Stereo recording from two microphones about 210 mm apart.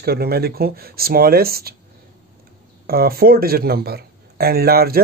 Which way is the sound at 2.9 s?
45° right (ahead or behind).